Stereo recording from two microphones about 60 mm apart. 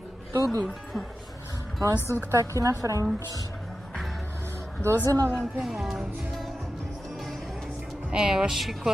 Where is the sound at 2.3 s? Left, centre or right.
Right.